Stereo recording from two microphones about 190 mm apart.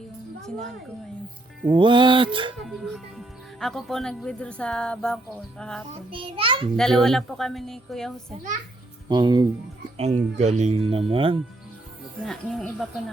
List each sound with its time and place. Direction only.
1.7 s music: 25° right (ahead or behind)
2.6 s speech: centre (ahead or behind)
5.9 s music: 30° right (ahead or behind)
6.7 s speech: centre (ahead or behind)
9.0 s music: 20° right (ahead or behind)
10.0 s speech: 35° right (ahead or behind)
12.2 s speech: centre (ahead or behind)